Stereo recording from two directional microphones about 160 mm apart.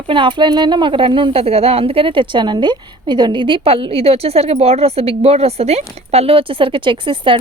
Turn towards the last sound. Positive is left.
turn(degrees=-30)  # may be behind; listen again after turning